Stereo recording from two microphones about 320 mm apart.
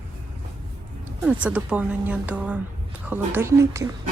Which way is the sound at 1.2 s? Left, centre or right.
Centre.